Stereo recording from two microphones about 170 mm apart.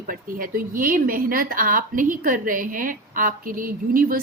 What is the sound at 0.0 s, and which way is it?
A woman's voice, 55° right (ahead or behind).